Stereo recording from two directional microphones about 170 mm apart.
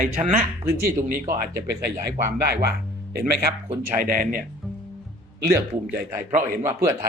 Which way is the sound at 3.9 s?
60° right (ahead or behind).